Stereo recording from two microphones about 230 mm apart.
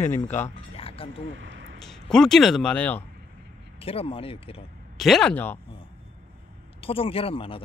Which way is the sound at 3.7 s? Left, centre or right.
Left.